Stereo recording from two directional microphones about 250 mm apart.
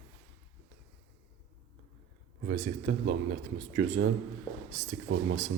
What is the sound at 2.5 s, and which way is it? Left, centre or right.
A man's voice, right.